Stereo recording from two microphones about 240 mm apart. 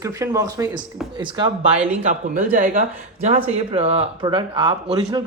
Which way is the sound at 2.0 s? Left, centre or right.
Right.